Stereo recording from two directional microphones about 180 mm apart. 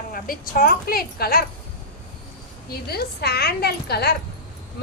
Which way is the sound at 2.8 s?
60° left (ahead or behind).